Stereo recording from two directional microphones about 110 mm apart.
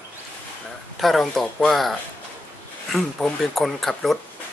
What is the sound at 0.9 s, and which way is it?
Speech, centre (ahead or behind).